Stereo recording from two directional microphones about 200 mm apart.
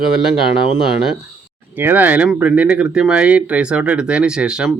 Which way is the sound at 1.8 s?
10° right (ahead or behind).